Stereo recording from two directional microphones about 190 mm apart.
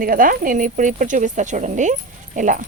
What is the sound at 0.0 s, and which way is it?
Speech, 45° right (ahead or behind).